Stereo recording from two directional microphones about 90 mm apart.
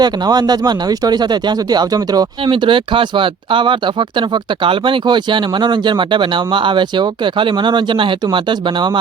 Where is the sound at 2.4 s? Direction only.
70° right (ahead or behind).